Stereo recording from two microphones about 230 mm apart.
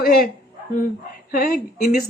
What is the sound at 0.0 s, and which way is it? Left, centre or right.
Speech, left.